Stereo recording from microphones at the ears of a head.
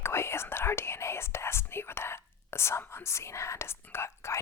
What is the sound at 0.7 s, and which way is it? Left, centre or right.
Whispering, left.